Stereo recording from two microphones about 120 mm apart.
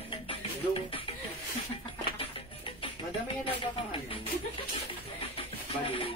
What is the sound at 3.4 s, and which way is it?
Speech, 50° left (ahead or behind).